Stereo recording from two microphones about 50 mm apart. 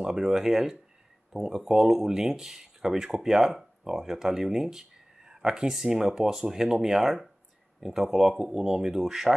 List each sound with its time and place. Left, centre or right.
0.0 s speech: centre